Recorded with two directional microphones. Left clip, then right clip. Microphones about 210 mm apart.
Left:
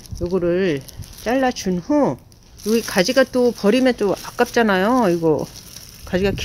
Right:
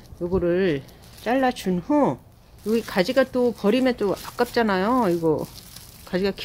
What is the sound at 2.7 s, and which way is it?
Speech, 20° left (ahead or behind).